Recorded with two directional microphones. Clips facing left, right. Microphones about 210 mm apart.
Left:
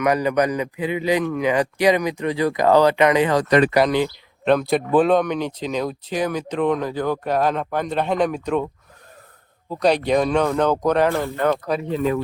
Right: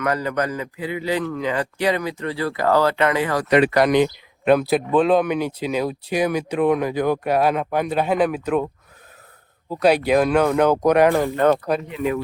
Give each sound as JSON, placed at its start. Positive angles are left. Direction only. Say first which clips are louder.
{"t": 0.0, "sound": "a man's voice", "louder": "left 4 dB", "side_deg": 15}
{"t": 3.8, "sound": "speech", "louder": "right 3 dB", "side_deg": -15}
{"t": 9.6, "sound": "speech", "louder": "right 1 dB", "side_deg": -5}